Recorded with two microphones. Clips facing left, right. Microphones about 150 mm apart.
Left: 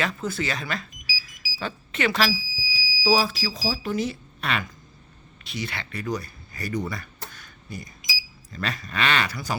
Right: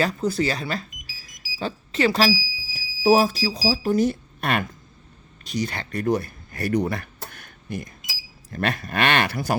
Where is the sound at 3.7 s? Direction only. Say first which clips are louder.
Right 8 dB; 40° right (ahead or behind).